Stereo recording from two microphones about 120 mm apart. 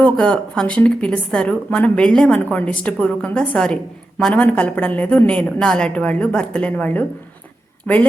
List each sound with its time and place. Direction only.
0.0 s a woman's voice: 5° left (ahead or behind)